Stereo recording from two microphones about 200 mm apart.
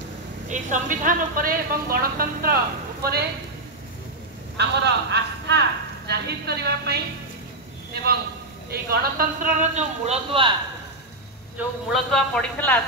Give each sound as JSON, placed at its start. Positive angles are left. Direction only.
{"t": 0.5, "sound": "speech", "side_deg": -40}
{"t": 4.6, "sound": "a man's voice", "side_deg": -60}
{"t": 11.5, "sound": "a man's voice", "side_deg": 0}